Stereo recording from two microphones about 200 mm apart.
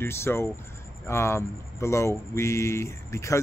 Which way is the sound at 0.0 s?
10° left (ahead or behind).